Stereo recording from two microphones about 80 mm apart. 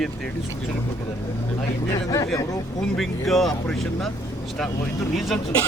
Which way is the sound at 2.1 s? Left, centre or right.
Left.